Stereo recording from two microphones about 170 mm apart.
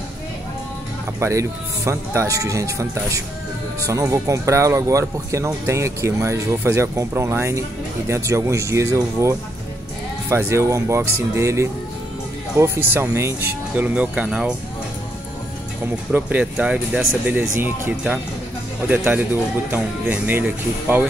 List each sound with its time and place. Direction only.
1.2 s speech: 15° right (ahead or behind)
16.1 s speech: 10° right (ahead or behind)